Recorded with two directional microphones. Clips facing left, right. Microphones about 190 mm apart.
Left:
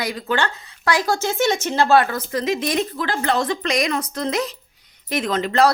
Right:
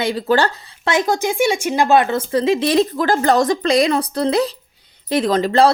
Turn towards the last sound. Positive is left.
turn(degrees=-35)  # may be behind; listen again after turning